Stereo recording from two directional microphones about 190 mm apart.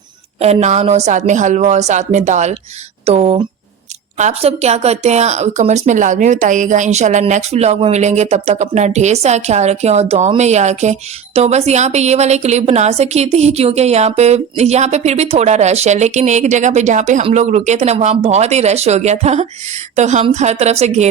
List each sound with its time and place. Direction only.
0.3 s a woman's voice: 35° right (ahead or behind)